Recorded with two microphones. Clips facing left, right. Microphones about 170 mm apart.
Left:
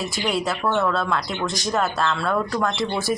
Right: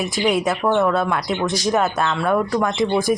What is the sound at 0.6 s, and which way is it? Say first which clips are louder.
Speech: right 4 dB; 15° right (ahead or behind).